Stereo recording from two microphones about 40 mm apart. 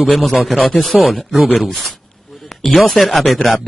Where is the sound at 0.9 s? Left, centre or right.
Centre.